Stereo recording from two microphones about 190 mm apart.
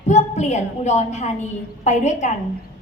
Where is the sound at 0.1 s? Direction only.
35° left (ahead or behind).